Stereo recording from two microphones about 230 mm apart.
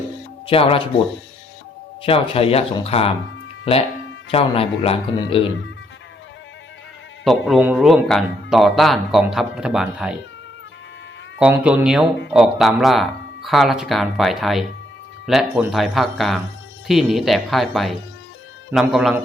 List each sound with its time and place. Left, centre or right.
0.4 s speech: left
7.3 s speech: centre
11.3 s speech: centre